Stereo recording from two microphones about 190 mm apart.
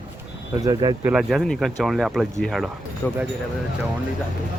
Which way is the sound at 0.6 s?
20° right (ahead or behind).